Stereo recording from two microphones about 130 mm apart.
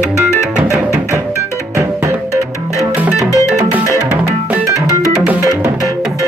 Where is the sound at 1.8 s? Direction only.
20° right (ahead or behind).